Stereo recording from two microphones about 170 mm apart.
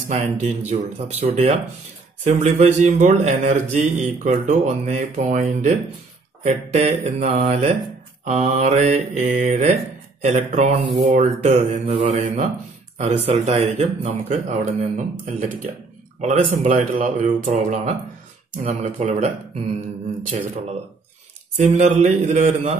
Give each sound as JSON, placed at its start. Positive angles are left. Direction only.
{"t": 0.1, "sound": "mantra", "side_deg": -45}
{"t": 2.2, "sound": "speech", "side_deg": -45}
{"t": 11.0, "sound": "mantra", "side_deg": -40}
{"t": 14.0, "sound": "speech", "side_deg": -40}
{"t": 21.5, "sound": "speech", "side_deg": -45}